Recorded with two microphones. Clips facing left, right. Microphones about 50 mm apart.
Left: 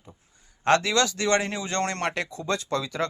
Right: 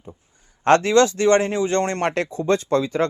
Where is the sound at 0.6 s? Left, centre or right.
Right.